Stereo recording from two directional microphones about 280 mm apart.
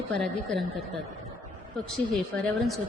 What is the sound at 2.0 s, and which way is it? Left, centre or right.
Speech, centre.